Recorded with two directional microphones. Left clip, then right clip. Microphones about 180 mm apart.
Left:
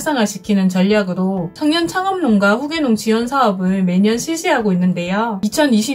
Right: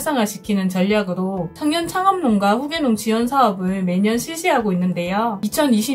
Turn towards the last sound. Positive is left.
turn(degrees=-20)  # may be behind; listen again after turning